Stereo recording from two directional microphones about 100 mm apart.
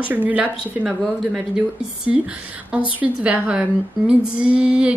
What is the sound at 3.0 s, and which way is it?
A woman's voice, 15° right (ahead or behind).